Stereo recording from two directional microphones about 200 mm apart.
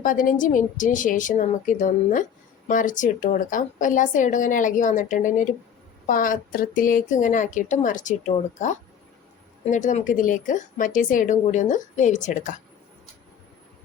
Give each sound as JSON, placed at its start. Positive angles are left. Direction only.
{"t": 0.0, "sound": "speech", "side_deg": 40}
{"t": 9.6, "sound": "speech", "side_deg": 35}